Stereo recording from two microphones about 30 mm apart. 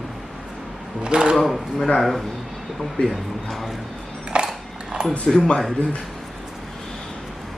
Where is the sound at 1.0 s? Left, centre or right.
Right.